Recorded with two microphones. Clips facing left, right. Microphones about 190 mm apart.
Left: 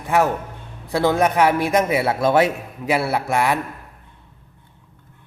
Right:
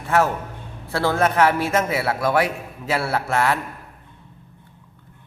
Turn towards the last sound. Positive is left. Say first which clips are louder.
# left 1 dB
turn(degrees=15)  # may be behind; listen again after turning